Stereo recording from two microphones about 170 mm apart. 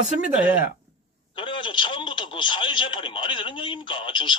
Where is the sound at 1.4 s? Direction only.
30° left (ahead or behind).